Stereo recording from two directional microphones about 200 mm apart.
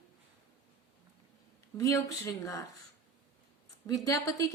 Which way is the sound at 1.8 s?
15° left (ahead or behind).